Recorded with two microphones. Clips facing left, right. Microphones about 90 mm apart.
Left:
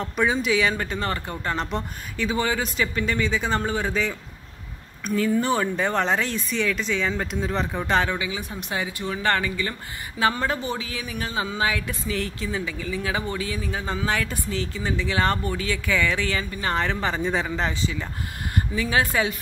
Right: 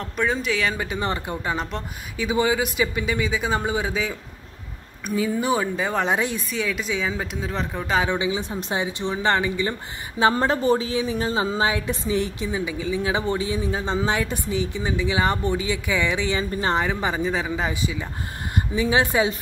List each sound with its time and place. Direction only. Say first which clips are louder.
0.0 s speech: left 1 dB; 5° left (ahead or behind)
0.7 s speech: right 1 dB; 10° right (ahead or behind)
2.2 s speech: right 3 dB; 15° right (ahead or behind)
8.0 s speech: right 3 dB; 20° right (ahead or behind)
16.8 s speech: right 1 dB; 10° right (ahead or behind)